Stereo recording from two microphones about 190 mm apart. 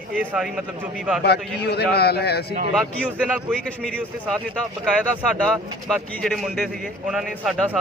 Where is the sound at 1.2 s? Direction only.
60° left (ahead or behind).